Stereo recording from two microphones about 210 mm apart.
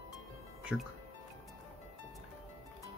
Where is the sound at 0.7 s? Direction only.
5° right (ahead or behind).